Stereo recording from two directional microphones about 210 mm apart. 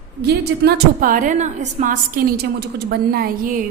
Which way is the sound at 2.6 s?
45° right (ahead or behind).